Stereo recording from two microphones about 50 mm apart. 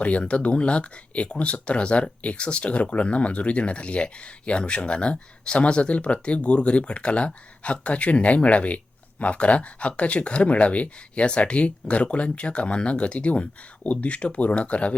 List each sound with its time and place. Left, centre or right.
0.0 s speech: left